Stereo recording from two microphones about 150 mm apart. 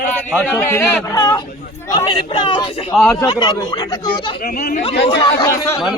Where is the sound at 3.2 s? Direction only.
30° left (ahead or behind).